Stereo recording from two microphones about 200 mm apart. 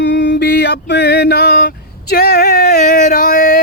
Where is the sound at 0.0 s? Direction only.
60° left (ahead or behind).